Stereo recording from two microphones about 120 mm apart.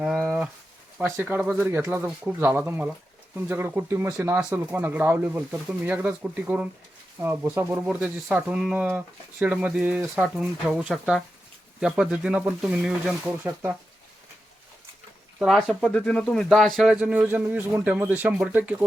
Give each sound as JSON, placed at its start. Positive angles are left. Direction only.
{"t": 0.0, "sound": "livestock", "side_deg": -5}
{"t": 1.1, "sound": "speech", "side_deg": -15}
{"t": 7.9, "sound": "speech", "side_deg": -10}
{"t": 13.2, "sound": "speech", "side_deg": -15}
{"t": 15.4, "sound": "speech", "side_deg": 0}